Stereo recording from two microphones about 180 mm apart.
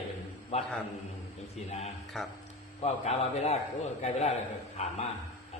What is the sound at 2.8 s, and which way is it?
A man's voice, 35° left (ahead or behind).